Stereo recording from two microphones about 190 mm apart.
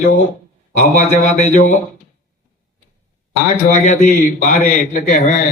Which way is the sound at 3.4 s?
40° left (ahead or behind).